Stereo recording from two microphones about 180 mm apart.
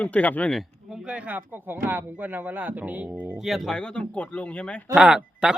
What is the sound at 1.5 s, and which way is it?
Speech, 10° right (ahead or behind).